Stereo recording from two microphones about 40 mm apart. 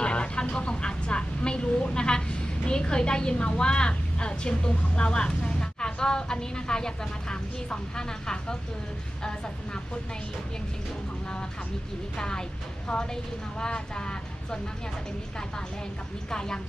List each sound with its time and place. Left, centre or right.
0.0 s vehicle: left
5.6 s speech: left
12.2 s speech: centre
16.3 s speech: centre